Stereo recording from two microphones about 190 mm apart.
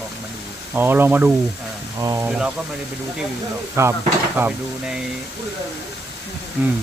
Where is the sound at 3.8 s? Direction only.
15° right (ahead or behind).